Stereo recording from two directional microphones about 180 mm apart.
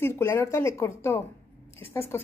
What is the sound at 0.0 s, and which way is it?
A woman's voice, 15° left (ahead or behind).